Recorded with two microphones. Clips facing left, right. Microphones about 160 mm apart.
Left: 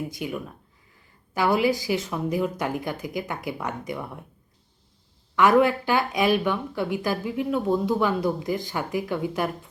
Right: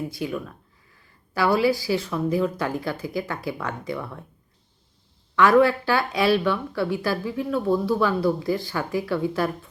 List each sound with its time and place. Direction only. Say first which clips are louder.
0.1 s speech: right 2 dB; 15° left (ahead or behind)
5.4 s speech: right 1 dB; 15° left (ahead or behind)